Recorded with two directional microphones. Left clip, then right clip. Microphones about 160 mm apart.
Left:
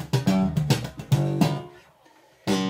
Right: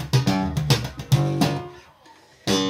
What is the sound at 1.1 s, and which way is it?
Music, 5° right (ahead or behind).